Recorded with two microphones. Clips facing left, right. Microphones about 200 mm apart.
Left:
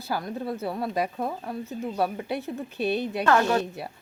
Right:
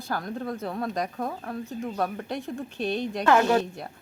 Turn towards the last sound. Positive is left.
turn(degrees=5)  # may be behind; listen again after turning